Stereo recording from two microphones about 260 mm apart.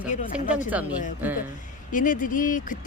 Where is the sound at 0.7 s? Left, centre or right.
Centre.